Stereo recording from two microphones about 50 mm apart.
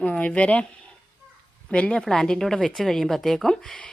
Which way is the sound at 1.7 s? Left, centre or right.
Left.